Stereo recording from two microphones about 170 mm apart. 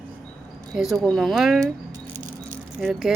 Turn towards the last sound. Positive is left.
turn(degrees=0)  # may be behind; listen again after turning